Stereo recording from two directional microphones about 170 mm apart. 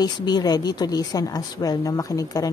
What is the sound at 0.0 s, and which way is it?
A woman's voice, 25° left (ahead or behind).